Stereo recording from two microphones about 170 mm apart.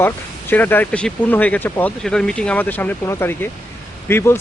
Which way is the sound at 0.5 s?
10° left (ahead or behind).